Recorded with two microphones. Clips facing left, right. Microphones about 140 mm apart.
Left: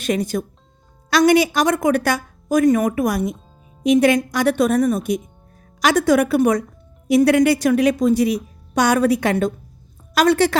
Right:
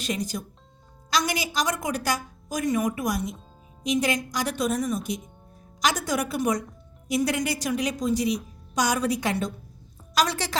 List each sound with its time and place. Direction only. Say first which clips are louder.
0.0 s a woman's voice: left 9 dB; 60° left (ahead or behind)